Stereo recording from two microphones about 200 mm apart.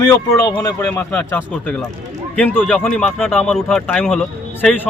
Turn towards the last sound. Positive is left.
turn(degrees=0)  # may be behind; listen again after turning